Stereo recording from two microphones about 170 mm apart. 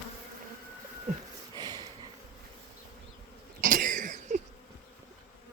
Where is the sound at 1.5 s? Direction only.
25° right (ahead or behind).